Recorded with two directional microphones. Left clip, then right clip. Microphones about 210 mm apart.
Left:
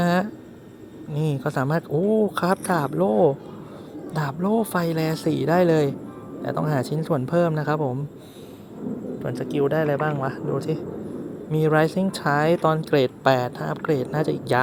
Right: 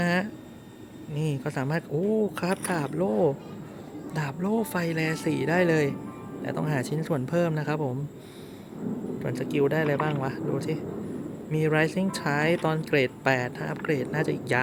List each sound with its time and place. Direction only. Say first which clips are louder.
0.0 s a sound: left 4 dB; 20° left (ahead or behind)
1.1 s speech: left 6 dB; 20° left (ahead or behind)
9.2 s speech: left 2 dB; centre (ahead or behind)